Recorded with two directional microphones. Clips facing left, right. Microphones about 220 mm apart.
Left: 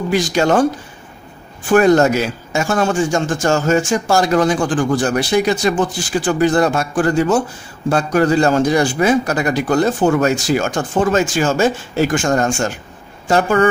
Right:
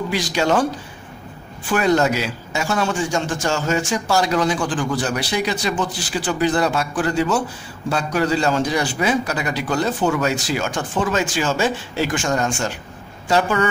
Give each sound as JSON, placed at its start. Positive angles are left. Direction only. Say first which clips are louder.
{"t": 0.1, "sound": "a man's voice", "louder": "left 5 dB", "side_deg": 50}
{"t": 1.7, "sound": "a man's voice", "louder": "left 6 dB", "side_deg": 45}